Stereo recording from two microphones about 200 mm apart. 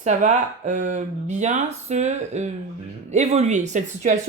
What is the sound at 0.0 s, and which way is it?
Speech, 35° right (ahead or behind).